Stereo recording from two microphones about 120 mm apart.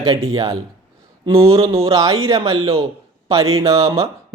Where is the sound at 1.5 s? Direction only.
25° right (ahead or behind).